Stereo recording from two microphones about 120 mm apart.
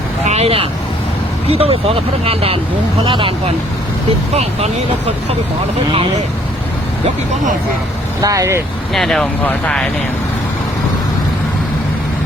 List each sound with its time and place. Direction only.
0.3 s speech: 55° right (ahead or behind)
4.4 s speech: 60° right (ahead or behind)
8.2 s speech: 30° right (ahead or behind)
8.9 s speech: centre (ahead or behind)
9.4 s speech: 10° left (ahead or behind)